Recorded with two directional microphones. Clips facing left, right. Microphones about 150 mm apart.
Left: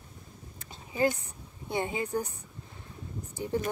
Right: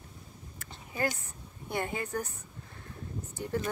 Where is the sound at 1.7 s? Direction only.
20° left (ahead or behind).